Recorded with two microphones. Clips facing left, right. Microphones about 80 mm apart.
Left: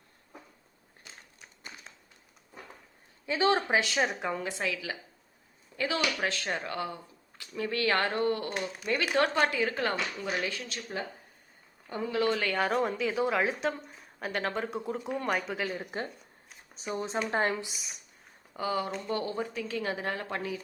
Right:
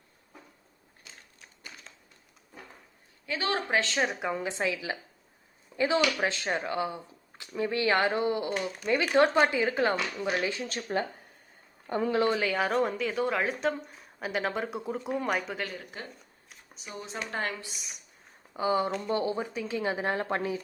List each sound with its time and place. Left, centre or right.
3.2 s speech: left
3.7 s a woman's voice: centre
4.4 s speech: right
10.9 s speech: right
12.1 s speech: right
12.4 s a woman's voice: centre
15.7 s speech: left
17.7 s a woman's voice: centre
18.5 s speech: right